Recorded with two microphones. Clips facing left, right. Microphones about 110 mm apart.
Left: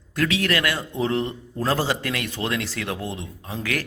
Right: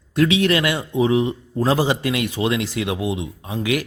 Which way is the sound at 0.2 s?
20° right (ahead or behind).